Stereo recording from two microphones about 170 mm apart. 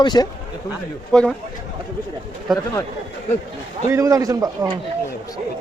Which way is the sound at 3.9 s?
20° right (ahead or behind).